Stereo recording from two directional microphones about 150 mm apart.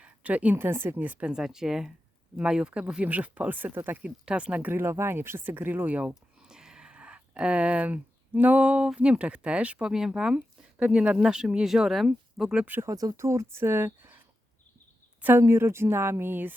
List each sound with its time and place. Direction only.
0.0 s speech: 10° right (ahead or behind)
15.2 s speech: 15° right (ahead or behind)